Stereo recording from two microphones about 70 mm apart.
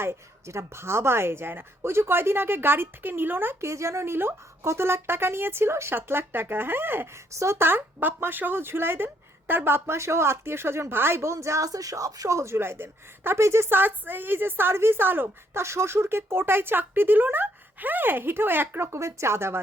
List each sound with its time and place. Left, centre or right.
0.0 s speech: right
3.6 s speech: right
7.3 s speech: right
15.6 s speech: right